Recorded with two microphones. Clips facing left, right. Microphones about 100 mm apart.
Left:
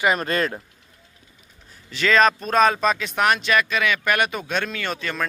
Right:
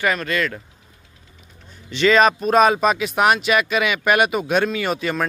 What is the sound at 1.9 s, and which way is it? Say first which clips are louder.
Speech: right 3 dB; 5° right (ahead or behind).